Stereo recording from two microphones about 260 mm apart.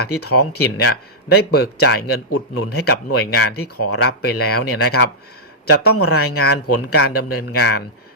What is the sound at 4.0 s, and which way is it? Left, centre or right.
Speech, left.